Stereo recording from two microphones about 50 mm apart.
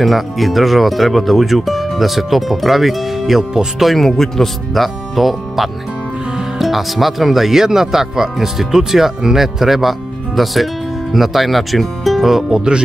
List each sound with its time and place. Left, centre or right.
0.0 s speech: centre